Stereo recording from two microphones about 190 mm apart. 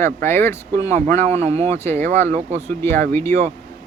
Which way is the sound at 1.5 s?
35° right (ahead or behind).